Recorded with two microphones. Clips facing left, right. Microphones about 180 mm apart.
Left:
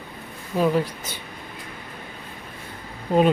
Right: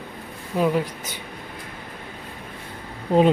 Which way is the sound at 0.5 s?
15° right (ahead or behind).